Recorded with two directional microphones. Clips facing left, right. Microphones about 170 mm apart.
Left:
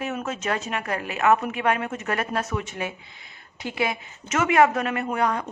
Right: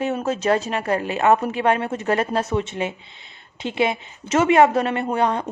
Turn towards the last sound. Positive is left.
turn(degrees=-30)  # may be behind; listen again after turning